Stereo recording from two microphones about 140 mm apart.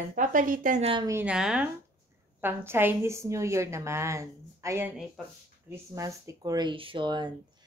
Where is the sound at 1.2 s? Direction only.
5° right (ahead or behind).